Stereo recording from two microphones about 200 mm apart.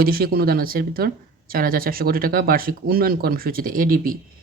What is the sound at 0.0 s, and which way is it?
Speech, 50° right (ahead or behind).